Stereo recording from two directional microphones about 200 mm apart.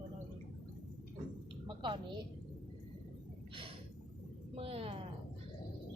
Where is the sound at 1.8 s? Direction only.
25° right (ahead or behind).